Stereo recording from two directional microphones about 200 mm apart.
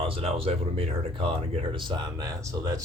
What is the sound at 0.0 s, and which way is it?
Speech, 30° right (ahead or behind).